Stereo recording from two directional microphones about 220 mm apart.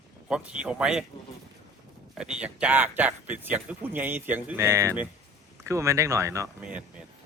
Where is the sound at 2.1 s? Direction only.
5° right (ahead or behind).